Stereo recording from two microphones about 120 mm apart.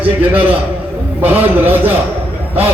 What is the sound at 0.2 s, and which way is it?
A man's voice, 15° right (ahead or behind).